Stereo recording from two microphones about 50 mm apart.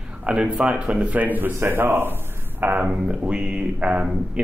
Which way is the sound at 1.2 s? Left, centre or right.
Right.